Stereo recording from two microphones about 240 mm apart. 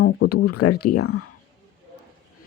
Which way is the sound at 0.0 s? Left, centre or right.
Left.